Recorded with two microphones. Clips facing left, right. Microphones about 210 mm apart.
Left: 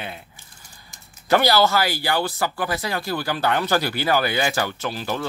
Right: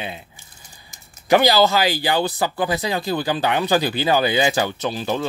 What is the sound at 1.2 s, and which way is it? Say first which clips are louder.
Speech: right 3 dB; 15° right (ahead or behind).